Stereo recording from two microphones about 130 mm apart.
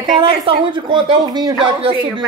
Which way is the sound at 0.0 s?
40° right (ahead or behind).